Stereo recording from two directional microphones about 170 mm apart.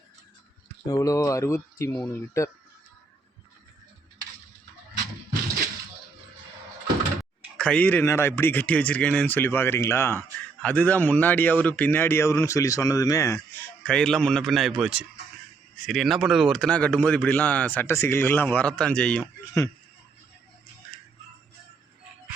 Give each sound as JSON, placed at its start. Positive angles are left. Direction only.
{"t": 0.9, "sound": "speech", "side_deg": 20}
{"t": 7.5, "sound": "speech", "side_deg": 5}
{"t": 13.8, "sound": "a man's voice", "side_deg": 5}